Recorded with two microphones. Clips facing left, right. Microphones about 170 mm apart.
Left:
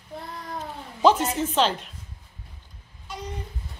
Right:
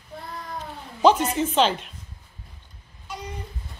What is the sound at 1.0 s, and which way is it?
Speech, centre (ahead or behind).